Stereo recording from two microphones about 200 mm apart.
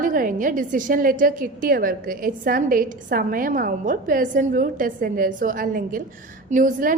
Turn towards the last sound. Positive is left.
turn(degrees=-40)  # may be behind; listen again after turning